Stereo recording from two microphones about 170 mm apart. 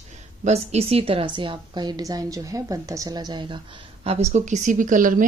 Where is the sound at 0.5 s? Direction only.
40° right (ahead or behind).